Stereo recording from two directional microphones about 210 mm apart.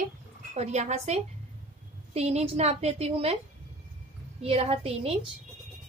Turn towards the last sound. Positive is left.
turn(degrees=-30)  # may be behind; listen again after turning